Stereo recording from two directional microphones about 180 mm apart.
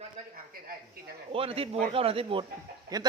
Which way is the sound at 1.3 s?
30° right (ahead or behind).